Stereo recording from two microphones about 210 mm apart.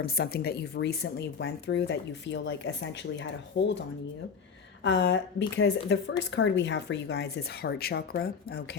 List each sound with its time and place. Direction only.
0.0 s speech: 45° left (ahead or behind)